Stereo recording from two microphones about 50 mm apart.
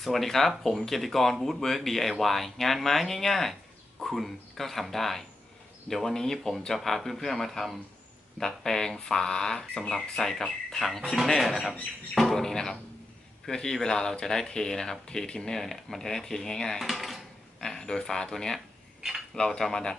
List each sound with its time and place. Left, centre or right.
0.0 s speech: centre
12.1 s speech: centre
17.6 s speech: centre